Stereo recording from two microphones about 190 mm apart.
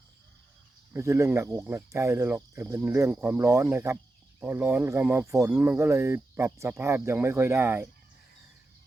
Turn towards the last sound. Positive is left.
turn(degrees=-10)  # may be behind; listen again after turning